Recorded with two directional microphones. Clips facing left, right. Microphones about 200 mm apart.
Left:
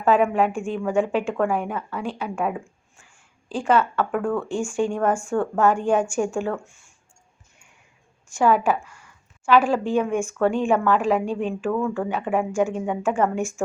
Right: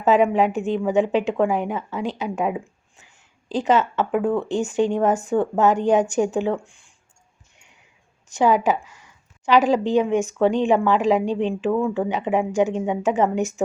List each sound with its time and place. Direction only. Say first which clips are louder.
0.0 s a woman's voice: right 2 dB; 20° right (ahead or behind)
8.4 s a woman's voice: right 1 dB; 20° right (ahead or behind)